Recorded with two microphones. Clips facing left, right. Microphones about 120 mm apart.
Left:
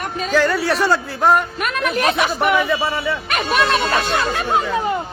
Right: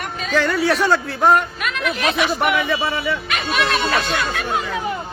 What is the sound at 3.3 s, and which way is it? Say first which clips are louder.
Speech: left 5 dB; 45° left (ahead or behind).